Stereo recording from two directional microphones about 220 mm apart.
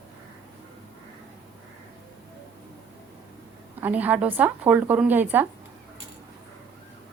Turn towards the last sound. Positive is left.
turn(degrees=-10)  # may be behind; listen again after turning